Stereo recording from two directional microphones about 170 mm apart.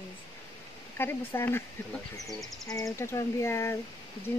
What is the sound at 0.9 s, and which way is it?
Speech, 15° left (ahead or behind).